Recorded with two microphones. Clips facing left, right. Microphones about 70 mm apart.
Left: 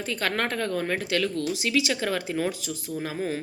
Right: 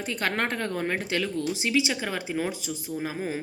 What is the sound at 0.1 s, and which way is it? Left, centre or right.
A woman's voice, centre.